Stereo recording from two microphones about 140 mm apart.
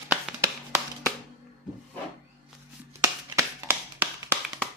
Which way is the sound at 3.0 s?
20° right (ahead or behind).